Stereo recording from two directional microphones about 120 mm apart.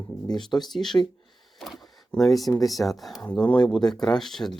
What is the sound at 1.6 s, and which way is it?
Camera, centre (ahead or behind).